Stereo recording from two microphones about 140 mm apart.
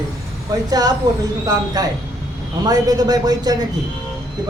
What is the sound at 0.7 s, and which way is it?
A man's voice, 25° right (ahead or behind).